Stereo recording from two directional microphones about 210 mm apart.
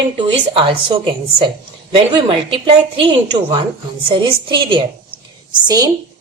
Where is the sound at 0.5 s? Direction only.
25° right (ahead or behind).